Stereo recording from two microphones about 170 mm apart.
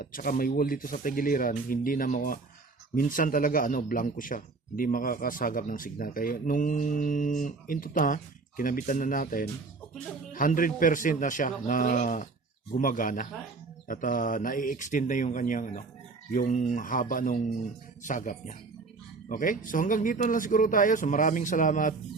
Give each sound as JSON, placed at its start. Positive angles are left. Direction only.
{"t": 0.0, "sound": "a man's voice", "side_deg": 55}